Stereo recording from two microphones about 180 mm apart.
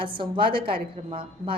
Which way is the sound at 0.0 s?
30° right (ahead or behind).